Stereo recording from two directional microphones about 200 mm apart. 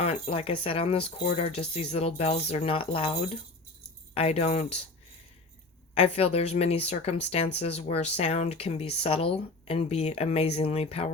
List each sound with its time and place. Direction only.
0.0 s speech: 30° left (ahead or behind)
5.9 s speech: 30° left (ahead or behind)